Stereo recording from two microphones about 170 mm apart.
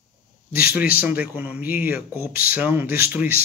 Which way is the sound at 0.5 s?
60° left (ahead or behind).